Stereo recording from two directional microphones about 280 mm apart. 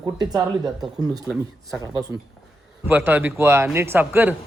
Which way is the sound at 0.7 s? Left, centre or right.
Centre.